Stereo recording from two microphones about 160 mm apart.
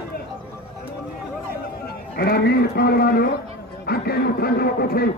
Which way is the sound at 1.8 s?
75° left (ahead or behind).